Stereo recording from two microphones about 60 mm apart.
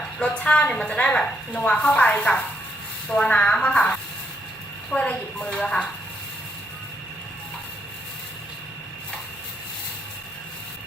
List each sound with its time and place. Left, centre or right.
0.2 s a woman's voice: left